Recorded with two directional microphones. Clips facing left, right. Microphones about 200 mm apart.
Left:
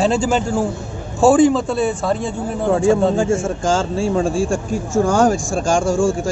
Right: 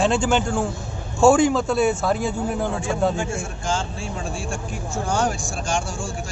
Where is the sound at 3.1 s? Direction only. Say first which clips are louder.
Left 10 dB; 90° left.